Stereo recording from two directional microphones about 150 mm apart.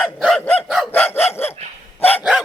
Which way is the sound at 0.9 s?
15° left (ahead or behind).